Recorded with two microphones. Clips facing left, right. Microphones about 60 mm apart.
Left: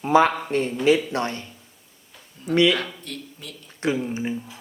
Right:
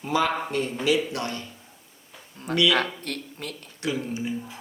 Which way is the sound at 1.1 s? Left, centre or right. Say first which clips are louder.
Left 4 dB; left.